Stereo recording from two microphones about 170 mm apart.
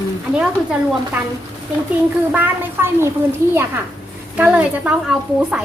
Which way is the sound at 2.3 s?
10° right (ahead or behind).